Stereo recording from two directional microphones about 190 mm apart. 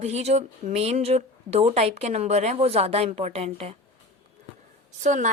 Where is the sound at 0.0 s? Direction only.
35° right (ahead or behind).